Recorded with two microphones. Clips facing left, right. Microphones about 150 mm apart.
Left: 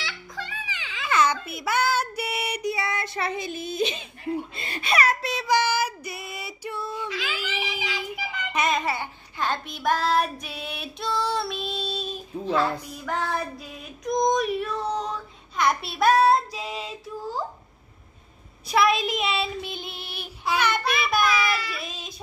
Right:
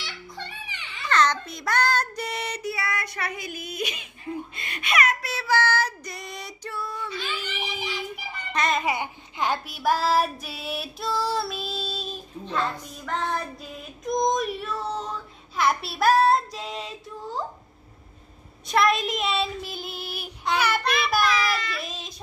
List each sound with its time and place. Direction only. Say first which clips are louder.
0.0 s baby cry: left 2 dB; 90° left
1.0 s child singing: even; 10° left (ahead or behind); by 4.1 s 25° left (ahead or behind)
4.6 s speech: right 2 dB; 30° left (ahead or behind)
5.3 s child singing: left 1 dB; 15° left (ahead or behind)
6.7 s female singing: left 1 dB; 25° left (ahead or behind)
7.1 s a sound: left 1 dB; 90° left
8.2 s child singing: left 5 dB; 90° left
8.5 s child singing: even; centre (ahead or behind)
8.8 s child singing: right 2 dB; 15° right (ahead or behind); by 17.5 s centre (ahead or behind)
18.7 s child singing: even; centre (ahead or behind)